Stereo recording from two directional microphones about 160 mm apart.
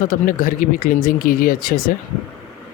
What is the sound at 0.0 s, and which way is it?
Speech, 55° left (ahead or behind).